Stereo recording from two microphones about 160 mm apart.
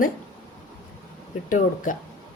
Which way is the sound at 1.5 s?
55° left (ahead or behind).